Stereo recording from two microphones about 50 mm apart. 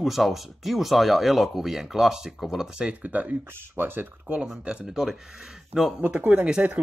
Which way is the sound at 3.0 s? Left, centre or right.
Right.